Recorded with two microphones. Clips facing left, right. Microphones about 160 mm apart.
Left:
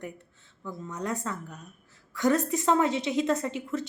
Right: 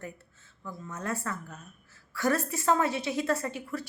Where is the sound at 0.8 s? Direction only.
15° left (ahead or behind).